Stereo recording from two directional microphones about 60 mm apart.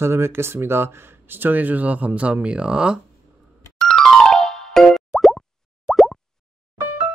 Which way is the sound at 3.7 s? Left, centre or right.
Centre.